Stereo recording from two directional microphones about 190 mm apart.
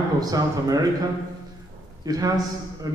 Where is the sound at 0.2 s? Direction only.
20° right (ahead or behind).